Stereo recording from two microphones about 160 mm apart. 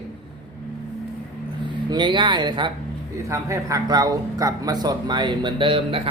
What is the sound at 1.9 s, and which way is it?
Speech, 30° right (ahead or behind).